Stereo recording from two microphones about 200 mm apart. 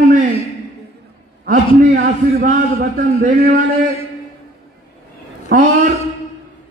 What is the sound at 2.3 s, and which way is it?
A man's voice, 40° right (ahead or behind).